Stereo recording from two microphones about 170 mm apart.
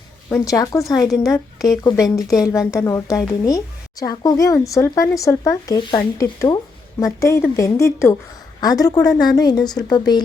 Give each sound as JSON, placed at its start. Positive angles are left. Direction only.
{"t": 0.3, "sound": "a woman's voice", "side_deg": 15}